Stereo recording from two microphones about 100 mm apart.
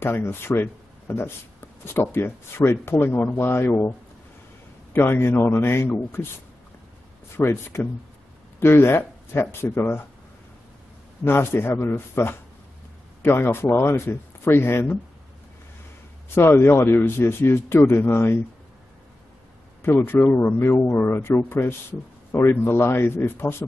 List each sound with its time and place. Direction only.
0.0 s speech: 20° left (ahead or behind)
4.9 s speech: 25° left (ahead or behind)
11.2 s speech: 25° left (ahead or behind)
16.3 s speech: 25° left (ahead or behind)
19.8 s speech: 20° left (ahead or behind)